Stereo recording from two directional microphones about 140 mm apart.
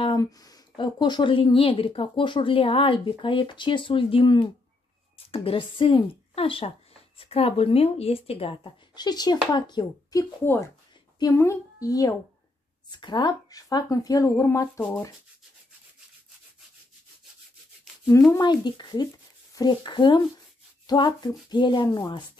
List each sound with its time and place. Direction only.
0.1 s a woman's voice: 25° left (ahead or behind)
18.3 s a woman's voice: 30° left (ahead or behind)